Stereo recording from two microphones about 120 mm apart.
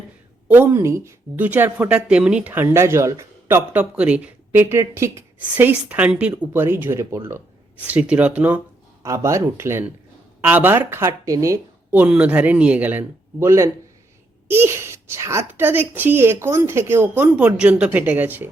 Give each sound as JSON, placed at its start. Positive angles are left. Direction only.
{"t": 0.4, "sound": "speech", "side_deg": -15}
{"t": 3.7, "sound": "a child's voice", "side_deg": -15}
{"t": 9.0, "sound": "a child's voice", "side_deg": -25}